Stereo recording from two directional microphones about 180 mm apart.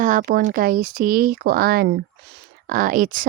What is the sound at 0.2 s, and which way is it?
A woman's voice, 55° right (ahead or behind).